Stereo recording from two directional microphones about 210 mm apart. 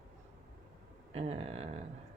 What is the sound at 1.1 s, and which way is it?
Speech, 30° right (ahead or behind).